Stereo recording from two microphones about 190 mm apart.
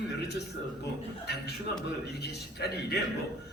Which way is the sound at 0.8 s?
60° left (ahead or behind).